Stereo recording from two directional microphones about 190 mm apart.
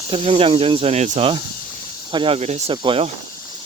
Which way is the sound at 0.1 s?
30° right (ahead or behind).